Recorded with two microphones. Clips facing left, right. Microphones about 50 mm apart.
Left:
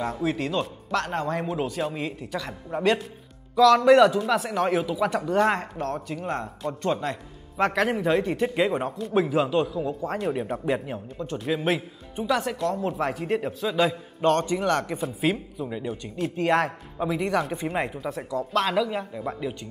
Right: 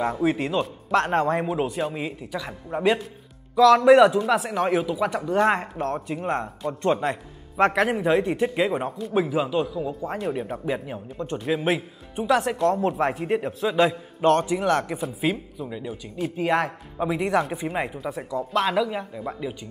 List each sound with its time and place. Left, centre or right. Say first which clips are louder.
0.0 s a man's voice: right 3 dB; centre
0.9 s speech: right 5 dB; right
1.4 s a man's voice: right 2 dB; centre
5.5 s a man's voice: right 2 dB; right
7.8 s a man's voice: right 2 dB; centre
11.6 s a man's voice: right 1 dB; centre
12.6 s speech: right 4 dB; right
13.2 s a man's voice: right 2 dB; centre